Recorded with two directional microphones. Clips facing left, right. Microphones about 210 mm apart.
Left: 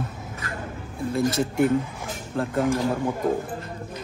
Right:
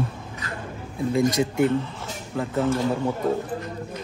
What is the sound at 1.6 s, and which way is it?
Speech, 10° left (ahead or behind).